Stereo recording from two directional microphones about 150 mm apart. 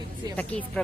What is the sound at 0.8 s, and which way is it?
Speech, 10° left (ahead or behind).